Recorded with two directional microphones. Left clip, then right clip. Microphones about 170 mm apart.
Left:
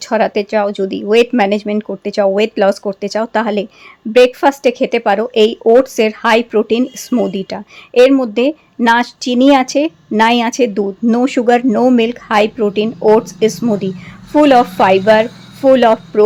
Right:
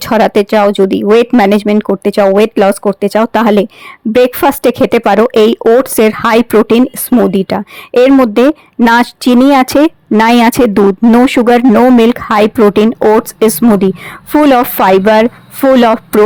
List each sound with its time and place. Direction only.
0.0 s speech: 40° right (ahead or behind)